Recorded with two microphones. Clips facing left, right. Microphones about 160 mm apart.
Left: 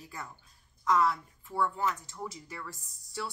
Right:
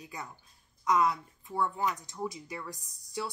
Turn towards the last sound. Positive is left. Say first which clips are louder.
# right 2 dB
turn(degrees=-15)  # may be behind; listen again after turning